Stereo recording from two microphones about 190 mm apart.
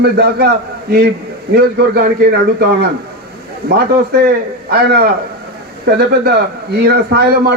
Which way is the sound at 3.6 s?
55° right (ahead or behind).